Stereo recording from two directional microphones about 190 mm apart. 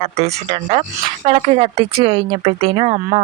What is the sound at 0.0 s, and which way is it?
Speech, 30° right (ahead or behind).